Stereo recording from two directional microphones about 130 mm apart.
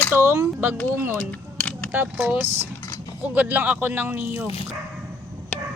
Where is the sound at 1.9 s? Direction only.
15° right (ahead or behind).